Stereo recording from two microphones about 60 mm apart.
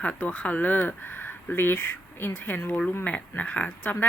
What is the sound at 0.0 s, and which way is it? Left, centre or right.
Speech, left.